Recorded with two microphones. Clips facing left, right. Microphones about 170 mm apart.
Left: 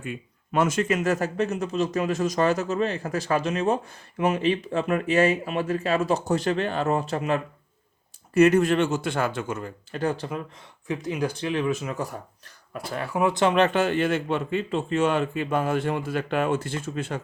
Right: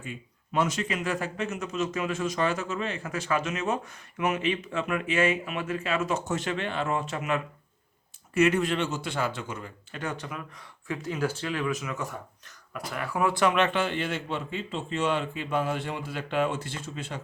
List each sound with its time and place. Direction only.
0.0 s speech: 55° left (ahead or behind)